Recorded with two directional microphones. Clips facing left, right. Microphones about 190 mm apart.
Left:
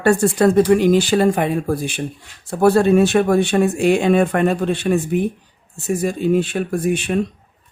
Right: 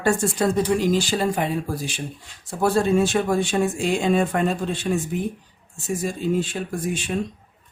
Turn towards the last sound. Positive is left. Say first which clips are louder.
# left 7 dB
turn(degrees=65)  # may be behind; listen again after turning